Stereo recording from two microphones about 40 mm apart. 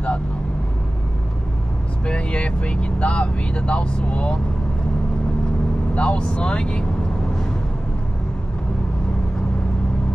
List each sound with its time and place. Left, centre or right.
2.0 s speech: left
5.9 s speech: left